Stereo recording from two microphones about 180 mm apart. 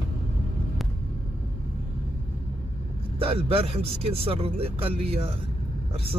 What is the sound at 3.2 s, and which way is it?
A man's voice, 30° right (ahead or behind).